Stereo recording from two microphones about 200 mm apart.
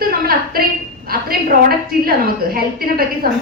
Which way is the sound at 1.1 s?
50° right (ahead or behind).